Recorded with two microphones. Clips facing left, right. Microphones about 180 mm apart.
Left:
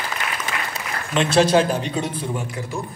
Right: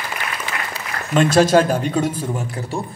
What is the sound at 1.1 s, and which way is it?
Speech, 45° right (ahead or behind).